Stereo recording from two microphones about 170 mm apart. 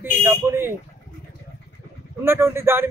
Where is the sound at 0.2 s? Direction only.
15° right (ahead or behind).